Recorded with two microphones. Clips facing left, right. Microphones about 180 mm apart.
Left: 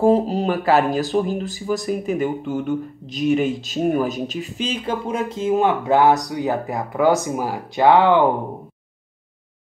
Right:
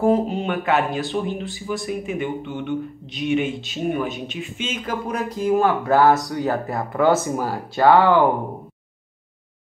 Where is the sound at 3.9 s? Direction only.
40° left (ahead or behind).